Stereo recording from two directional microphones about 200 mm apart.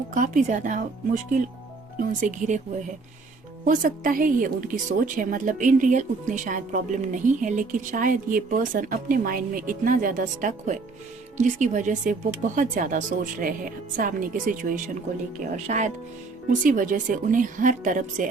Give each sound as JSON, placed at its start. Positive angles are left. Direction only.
{"t": 0.1, "sound": "a woman's voice", "side_deg": -40}
{"t": 2.0, "sound": "a woman's voice", "side_deg": -40}
{"t": 3.7, "sound": "a woman's voice", "side_deg": -45}